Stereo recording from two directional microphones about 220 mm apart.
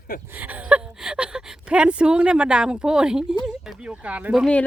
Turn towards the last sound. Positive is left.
turn(degrees=0)  # may be behind; listen again after turning